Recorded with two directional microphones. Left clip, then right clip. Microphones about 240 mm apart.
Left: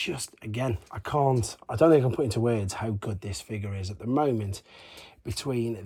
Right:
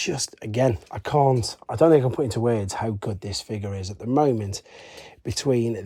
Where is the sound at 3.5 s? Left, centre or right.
Centre.